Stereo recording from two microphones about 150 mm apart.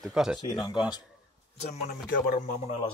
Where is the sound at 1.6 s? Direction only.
50° left (ahead or behind).